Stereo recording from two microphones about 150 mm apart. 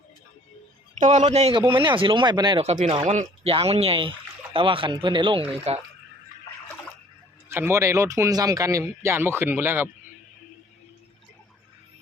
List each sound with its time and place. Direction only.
0.9 s speech: 50° right (ahead or behind); by 2.6 s 30° right (ahead or behind)
2.6 s speech: 45° right (ahead or behind)
7.5 s speech: 15° right (ahead or behind)